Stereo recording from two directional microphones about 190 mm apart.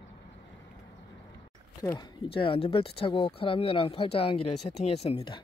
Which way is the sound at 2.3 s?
30° left (ahead or behind).